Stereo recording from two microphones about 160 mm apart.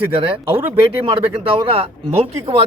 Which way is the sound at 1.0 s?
35° right (ahead or behind).